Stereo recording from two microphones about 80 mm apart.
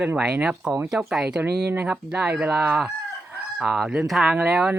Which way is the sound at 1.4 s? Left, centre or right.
Right.